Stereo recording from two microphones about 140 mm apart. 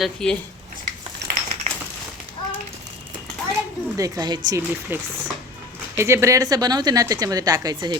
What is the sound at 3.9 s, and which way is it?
Speech, 25° right (ahead or behind).